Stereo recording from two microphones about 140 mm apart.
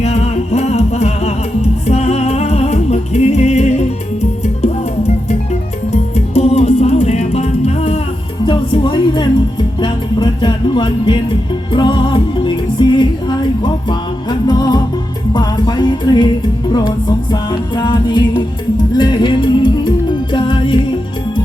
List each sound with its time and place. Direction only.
0.0 s music: 55° left (ahead or behind)
8.4 s music: 35° left (ahead or behind)